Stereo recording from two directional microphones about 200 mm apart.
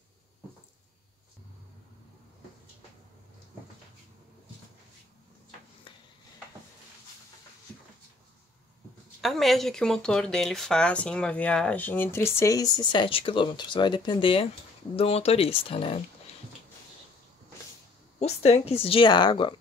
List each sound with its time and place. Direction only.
9.2 s speech: centre (ahead or behind); by 16.0 s 25° left (ahead or behind)
18.2 s speech: 30° left (ahead or behind)